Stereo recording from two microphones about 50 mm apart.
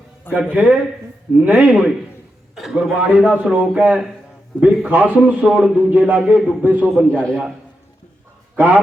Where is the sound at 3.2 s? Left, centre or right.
Right.